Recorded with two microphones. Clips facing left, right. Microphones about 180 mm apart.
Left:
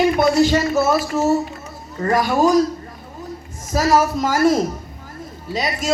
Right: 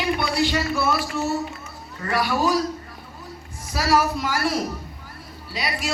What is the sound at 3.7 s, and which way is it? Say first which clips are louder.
Speech: left 5 dB; 45° left (ahead or behind).